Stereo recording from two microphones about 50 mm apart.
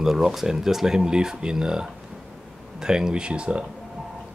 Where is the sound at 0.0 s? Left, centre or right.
Centre.